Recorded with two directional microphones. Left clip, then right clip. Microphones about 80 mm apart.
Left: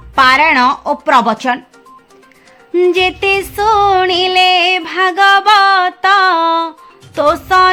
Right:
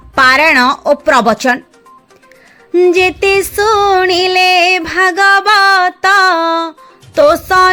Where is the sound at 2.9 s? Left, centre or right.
Right.